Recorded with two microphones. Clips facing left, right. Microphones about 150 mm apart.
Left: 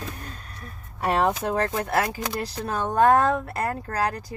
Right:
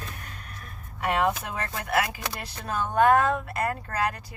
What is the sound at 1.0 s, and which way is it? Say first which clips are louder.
Speech: left 3 dB; 35° left (ahead or behind).